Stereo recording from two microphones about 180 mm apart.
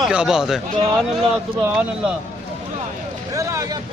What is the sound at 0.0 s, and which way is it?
Speech, 5° right (ahead or behind).